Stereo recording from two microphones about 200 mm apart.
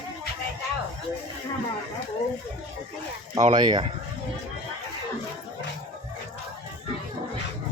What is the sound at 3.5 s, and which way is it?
Speech, 20° right (ahead or behind).